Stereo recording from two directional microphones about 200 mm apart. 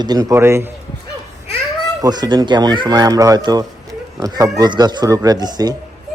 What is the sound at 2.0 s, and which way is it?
Speech, 20° right (ahead or behind).